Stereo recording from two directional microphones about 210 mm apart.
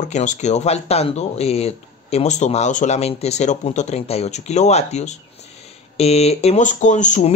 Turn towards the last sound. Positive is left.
turn(degrees=35)  # may be behind; listen again after turning